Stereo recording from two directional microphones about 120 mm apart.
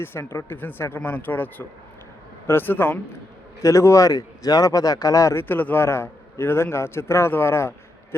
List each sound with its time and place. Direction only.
0.0 s speech: 20° left (ahead or behind)